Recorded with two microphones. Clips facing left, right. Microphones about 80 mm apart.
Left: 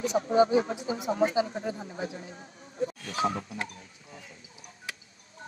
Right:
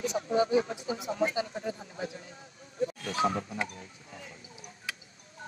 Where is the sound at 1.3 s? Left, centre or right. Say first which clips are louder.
Left 5 dB; left.